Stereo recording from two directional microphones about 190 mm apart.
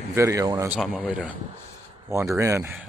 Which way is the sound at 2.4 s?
15° right (ahead or behind).